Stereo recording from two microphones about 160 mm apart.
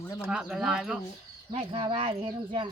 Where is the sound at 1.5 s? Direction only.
35° right (ahead or behind).